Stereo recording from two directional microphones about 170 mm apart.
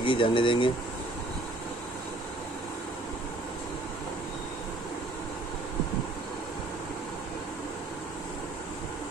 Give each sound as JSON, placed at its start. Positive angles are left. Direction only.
{"t": 0.0, "sound": "speech", "side_deg": 30}